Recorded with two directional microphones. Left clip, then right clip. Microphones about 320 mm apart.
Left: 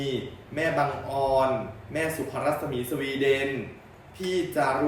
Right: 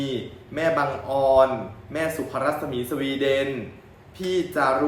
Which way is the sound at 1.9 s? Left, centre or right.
Centre.